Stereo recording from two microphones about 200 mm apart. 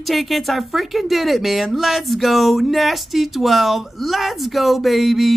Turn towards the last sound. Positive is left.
turn(degrees=0)  # may be behind; listen again after turning